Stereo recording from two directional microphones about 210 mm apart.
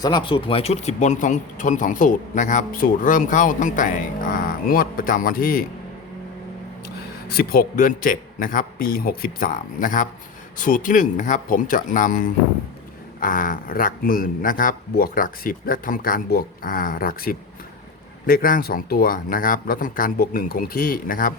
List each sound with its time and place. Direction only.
0.0 s speech: 20° left (ahead or behind); by 5.6 s 45° left (ahead or behind)
6.8 s a man's voice: 45° left (ahead or behind)